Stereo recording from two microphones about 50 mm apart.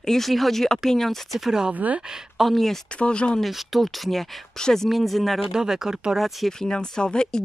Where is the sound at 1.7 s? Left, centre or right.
Right.